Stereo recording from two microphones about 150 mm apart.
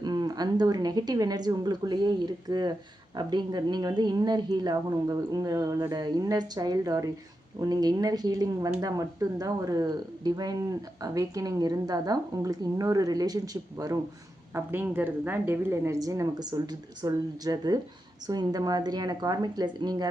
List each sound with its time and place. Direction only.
0.0 s speech: 30° right (ahead or behind)